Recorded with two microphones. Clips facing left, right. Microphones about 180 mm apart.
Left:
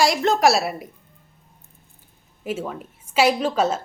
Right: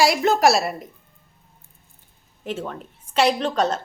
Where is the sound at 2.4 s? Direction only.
5° left (ahead or behind).